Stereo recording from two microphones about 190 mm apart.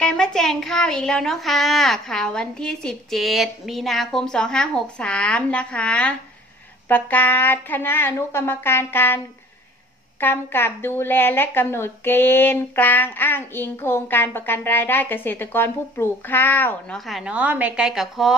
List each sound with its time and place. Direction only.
0.0 s a child's voice: 5° left (ahead or behind)
10.2 s a woman's voice: 10° left (ahead or behind)